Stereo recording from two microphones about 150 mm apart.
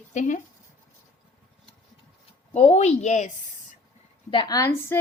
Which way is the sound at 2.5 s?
50° left (ahead or behind).